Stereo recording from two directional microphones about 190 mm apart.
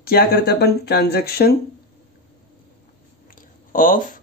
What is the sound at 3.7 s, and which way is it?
Speech, 45° left (ahead or behind).